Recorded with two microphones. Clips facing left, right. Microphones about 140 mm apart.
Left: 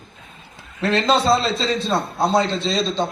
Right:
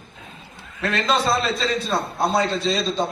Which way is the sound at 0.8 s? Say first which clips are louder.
Left 4 dB; 30° left (ahead or behind).